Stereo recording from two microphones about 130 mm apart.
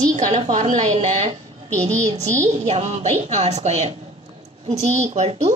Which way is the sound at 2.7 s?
55° right (ahead or behind).